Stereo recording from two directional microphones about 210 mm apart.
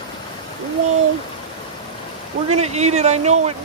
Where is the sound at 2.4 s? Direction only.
30° right (ahead or behind).